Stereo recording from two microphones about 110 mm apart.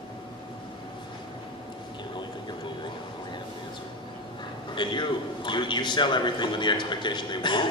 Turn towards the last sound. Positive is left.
turn(degrees=45)  # may be behind; listen again after turning